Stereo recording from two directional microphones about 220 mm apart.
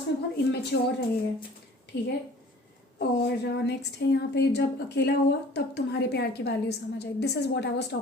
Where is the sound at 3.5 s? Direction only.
50° left (ahead or behind).